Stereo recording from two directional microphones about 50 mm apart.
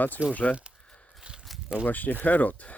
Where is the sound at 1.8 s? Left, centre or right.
Left.